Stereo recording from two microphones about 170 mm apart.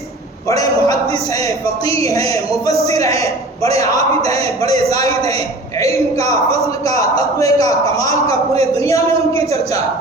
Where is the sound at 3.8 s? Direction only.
20° left (ahead or behind).